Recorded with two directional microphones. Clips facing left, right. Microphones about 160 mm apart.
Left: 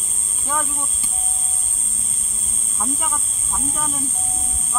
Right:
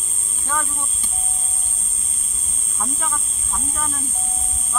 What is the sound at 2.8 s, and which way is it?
Speech, 10° left (ahead or behind).